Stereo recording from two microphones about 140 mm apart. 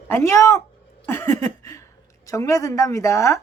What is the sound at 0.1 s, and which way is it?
Speech, 20° left (ahead or behind).